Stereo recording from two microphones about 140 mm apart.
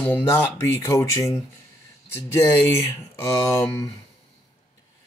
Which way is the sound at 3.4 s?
20° left (ahead or behind).